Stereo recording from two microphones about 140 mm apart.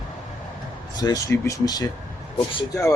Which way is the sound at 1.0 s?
25° left (ahead or behind).